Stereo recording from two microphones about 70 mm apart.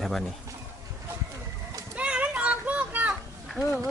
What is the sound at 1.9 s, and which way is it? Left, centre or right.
Child singing, centre.